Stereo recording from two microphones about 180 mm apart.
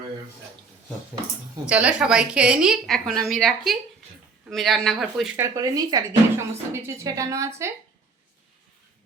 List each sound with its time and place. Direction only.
1.6 s a woman's voice: 5° right (ahead or behind)
5.4 s speech: 20° right (ahead or behind)